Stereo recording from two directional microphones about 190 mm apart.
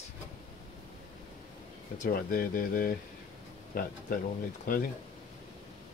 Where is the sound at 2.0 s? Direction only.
50° left (ahead or behind).